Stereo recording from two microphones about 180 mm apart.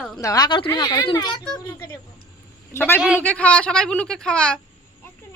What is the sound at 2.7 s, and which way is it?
Speech, 15° left (ahead or behind).